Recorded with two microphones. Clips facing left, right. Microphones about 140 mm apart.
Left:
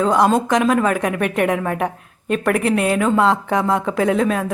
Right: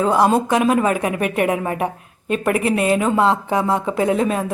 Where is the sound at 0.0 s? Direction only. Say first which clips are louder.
Even; 5° right (ahead or behind).